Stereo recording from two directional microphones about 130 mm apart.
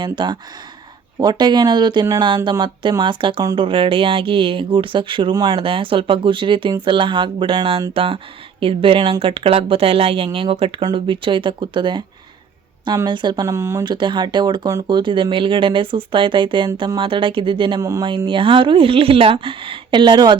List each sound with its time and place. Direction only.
0.0 s speech: 35° right (ahead or behind)
5.5 s speech: 45° right (ahead or behind)
13.1 s speech: 35° right (ahead or behind)
13.8 s speech: 35° right (ahead or behind)
17.7 s speech: 25° right (ahead or behind)
18.3 s speech: 40° right (ahead or behind)